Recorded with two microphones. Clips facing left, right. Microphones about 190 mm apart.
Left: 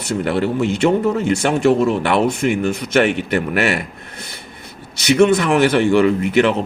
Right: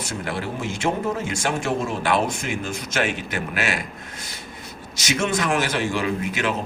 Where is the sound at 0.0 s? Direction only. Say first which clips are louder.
Left 10 dB; 65° left (ahead or behind).